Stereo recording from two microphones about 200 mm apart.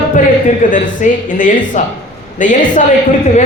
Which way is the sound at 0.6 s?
40° left (ahead or behind).